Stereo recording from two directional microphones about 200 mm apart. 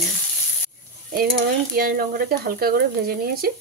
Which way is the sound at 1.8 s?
50° right (ahead or behind).